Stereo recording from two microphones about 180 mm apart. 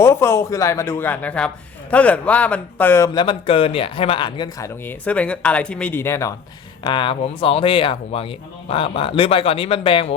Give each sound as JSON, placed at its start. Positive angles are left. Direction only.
{"t": 0.0, "sound": "speech", "side_deg": 15}
{"t": 3.2, "sound": "speech", "side_deg": 30}
{"t": 6.8, "sound": "speech", "side_deg": 25}